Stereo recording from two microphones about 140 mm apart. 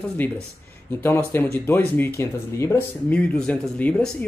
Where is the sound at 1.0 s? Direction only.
15° left (ahead or behind).